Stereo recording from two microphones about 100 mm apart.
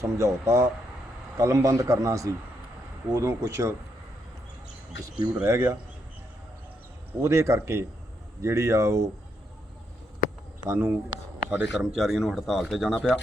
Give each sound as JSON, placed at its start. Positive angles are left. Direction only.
{"t": 0.0, "sound": "a man's voice", "side_deg": -30}
{"t": 5.4, "sound": "speech", "side_deg": -25}
{"t": 7.2, "sound": "speech", "side_deg": -30}
{"t": 10.7, "sound": "speech", "side_deg": -25}
{"t": 11.9, "sound": "speech", "side_deg": 0}